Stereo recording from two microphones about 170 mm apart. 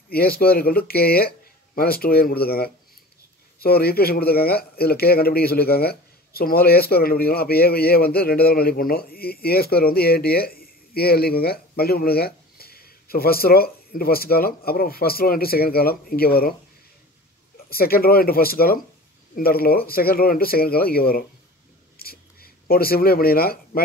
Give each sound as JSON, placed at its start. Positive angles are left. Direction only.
{"t": 0.1, "sound": "a man's voice", "side_deg": 65}
{"t": 17.6, "sound": "a man's voice", "side_deg": 60}
{"t": 21.9, "sound": "a sound", "side_deg": 60}